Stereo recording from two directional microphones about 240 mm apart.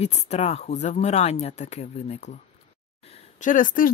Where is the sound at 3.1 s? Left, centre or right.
Left.